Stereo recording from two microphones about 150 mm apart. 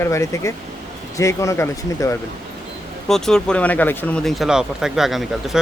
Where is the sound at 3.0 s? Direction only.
5° left (ahead or behind).